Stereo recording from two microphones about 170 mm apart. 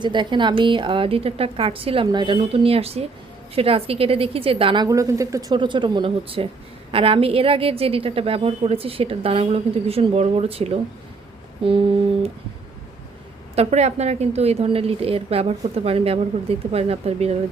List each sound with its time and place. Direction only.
0.0 s a woman's voice: 25° right (ahead or behind)
13.6 s a woman's voice: 40° right (ahead or behind)